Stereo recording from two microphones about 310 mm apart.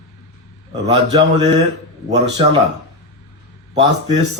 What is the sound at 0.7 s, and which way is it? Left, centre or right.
A man's voice, right.